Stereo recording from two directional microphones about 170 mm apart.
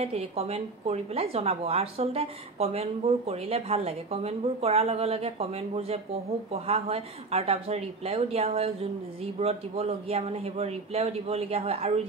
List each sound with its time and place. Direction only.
0.0 s speech: 35° right (ahead or behind)